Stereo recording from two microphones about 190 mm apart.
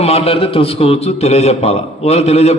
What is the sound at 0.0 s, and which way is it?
A man's voice, 30° left (ahead or behind).